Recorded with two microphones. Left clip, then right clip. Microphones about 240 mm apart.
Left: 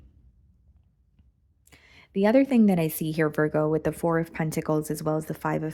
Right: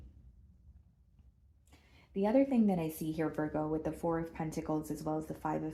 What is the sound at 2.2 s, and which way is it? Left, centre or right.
Speech, left.